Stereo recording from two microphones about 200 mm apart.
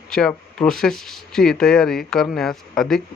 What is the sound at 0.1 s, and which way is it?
Speech, 5° left (ahead or behind).